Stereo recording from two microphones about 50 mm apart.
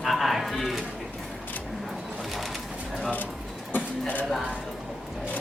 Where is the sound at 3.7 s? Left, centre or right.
Left.